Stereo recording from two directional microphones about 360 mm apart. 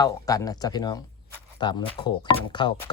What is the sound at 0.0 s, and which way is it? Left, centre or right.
Speech, centre.